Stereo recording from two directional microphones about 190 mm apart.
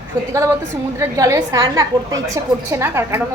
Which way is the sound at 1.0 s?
15° right (ahead or behind).